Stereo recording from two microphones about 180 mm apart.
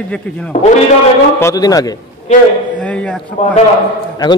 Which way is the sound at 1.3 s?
20° left (ahead or behind).